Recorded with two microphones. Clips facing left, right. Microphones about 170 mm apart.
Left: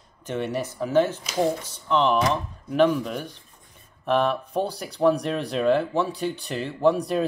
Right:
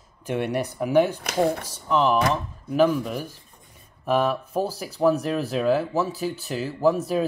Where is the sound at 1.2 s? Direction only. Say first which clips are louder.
Right 1 dB; 60° right (ahead or behind).